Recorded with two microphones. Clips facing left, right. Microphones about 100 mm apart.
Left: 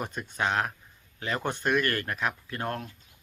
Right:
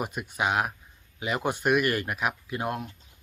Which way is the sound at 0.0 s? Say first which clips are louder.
Right 2 dB; 15° right (ahead or behind).